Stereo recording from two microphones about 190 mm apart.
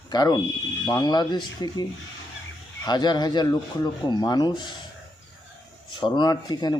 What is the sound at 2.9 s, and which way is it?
Speech, 20° left (ahead or behind).